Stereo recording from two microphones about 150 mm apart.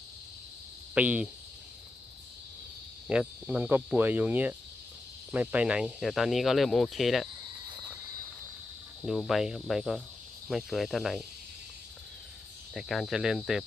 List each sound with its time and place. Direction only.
0.9 s speech: 10° right (ahead or behind)
3.1 s speech: 5° right (ahead or behind)
9.0 s speech: centre (ahead or behind)
12.7 s speech: centre (ahead or behind)